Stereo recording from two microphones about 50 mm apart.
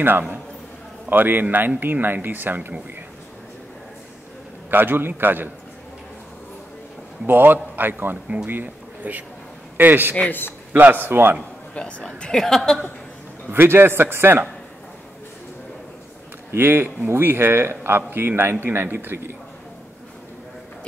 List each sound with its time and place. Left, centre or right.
1.0 s a man's voice: right
4.6 s a man's voice: right
7.2 s a man's voice: right
12.2 s a woman's voice: centre
13.5 s a man's voice: right
16.5 s a man's voice: right